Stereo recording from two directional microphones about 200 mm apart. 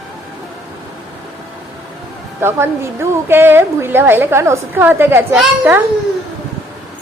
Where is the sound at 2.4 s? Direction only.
10° right (ahead or behind).